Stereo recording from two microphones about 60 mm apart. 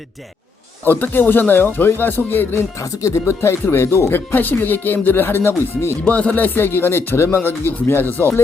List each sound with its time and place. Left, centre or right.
0.9 s speech: left
2.7 s speech: left
4.1 s speech: left
6.1 s speech: left